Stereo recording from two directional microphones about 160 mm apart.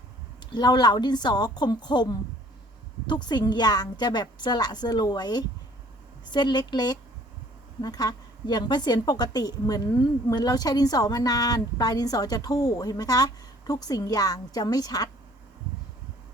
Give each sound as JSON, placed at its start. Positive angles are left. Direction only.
{"t": 0.5, "sound": "a woman's voice", "side_deg": 25}